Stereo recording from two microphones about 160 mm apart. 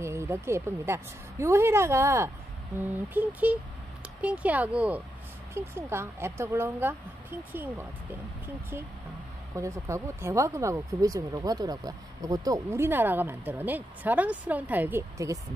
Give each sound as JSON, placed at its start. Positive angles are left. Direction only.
{"t": 0.0, "sound": "speech", "side_deg": -15}
{"t": 9.6, "sound": "speech", "side_deg": -20}